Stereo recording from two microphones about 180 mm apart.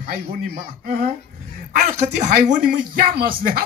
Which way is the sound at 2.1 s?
45° right (ahead or behind).